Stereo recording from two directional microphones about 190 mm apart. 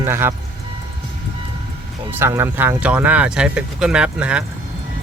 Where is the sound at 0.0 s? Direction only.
15° right (ahead or behind).